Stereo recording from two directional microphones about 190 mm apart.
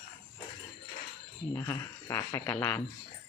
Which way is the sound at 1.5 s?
15° left (ahead or behind).